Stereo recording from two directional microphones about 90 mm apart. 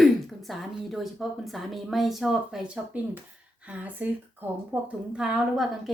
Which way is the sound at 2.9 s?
15° right (ahead or behind).